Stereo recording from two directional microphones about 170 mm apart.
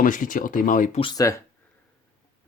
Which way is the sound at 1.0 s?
30° left (ahead or behind).